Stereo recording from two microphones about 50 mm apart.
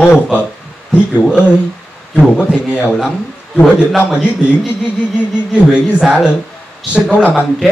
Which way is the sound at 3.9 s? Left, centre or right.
Centre.